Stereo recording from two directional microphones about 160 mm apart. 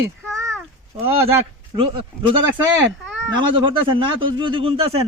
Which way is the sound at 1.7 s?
35° right (ahead or behind).